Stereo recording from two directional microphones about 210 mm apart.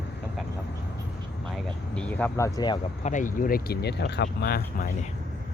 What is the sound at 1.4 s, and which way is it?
Speech, centre (ahead or behind).